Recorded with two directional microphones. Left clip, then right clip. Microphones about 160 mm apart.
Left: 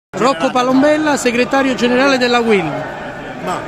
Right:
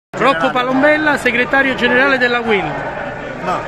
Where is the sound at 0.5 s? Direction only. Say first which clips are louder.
Even; 90° left.